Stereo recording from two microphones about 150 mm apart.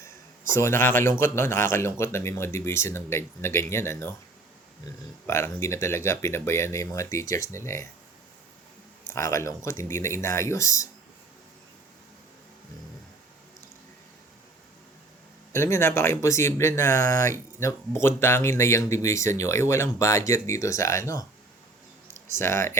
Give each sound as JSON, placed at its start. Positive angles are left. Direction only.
{"t": 0.5, "sound": "speech", "side_deg": 20}
{"t": 5.2, "sound": "speech", "side_deg": 15}
{"t": 9.0, "sound": "speech", "side_deg": 20}
{"t": 15.5, "sound": "speech", "side_deg": 15}
{"t": 22.0, "sound": "a sound", "side_deg": -55}
{"t": 22.4, "sound": "speech", "side_deg": 15}